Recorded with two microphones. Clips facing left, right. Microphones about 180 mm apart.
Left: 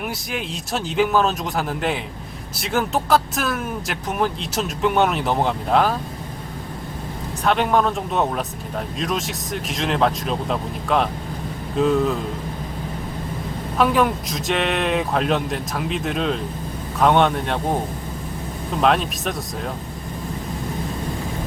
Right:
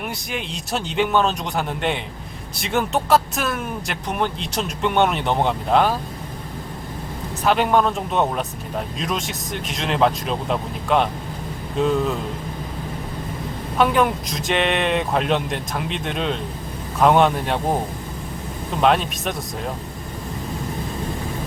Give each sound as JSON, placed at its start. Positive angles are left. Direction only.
{"t": 0.0, "sound": "speech", "side_deg": 0}
{"t": 7.4, "sound": "speech", "side_deg": 0}
{"t": 13.7, "sound": "speech", "side_deg": 0}
{"t": 18.8, "sound": "speech", "side_deg": 0}